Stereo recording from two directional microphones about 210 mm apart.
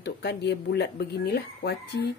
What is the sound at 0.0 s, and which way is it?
A woman's voice, 50° left (ahead or behind).